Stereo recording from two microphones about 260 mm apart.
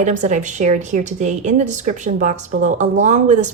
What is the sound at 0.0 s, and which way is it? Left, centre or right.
A woman's voice, right.